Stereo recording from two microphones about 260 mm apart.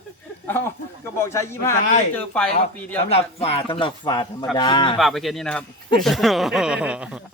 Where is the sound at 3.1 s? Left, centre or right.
Left.